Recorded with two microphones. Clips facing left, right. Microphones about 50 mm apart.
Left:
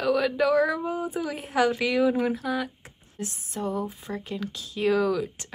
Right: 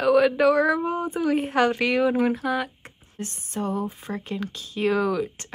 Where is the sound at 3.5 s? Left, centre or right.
Centre.